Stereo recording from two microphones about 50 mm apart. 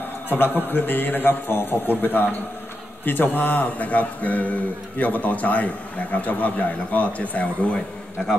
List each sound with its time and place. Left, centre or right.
0.7 s speech: left